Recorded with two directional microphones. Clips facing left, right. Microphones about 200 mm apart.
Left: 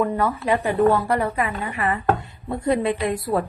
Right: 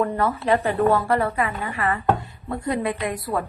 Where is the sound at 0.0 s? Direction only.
10° left (ahead or behind).